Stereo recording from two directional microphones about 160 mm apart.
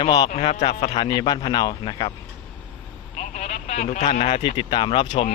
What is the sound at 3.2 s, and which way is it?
Telephone, 50° left (ahead or behind).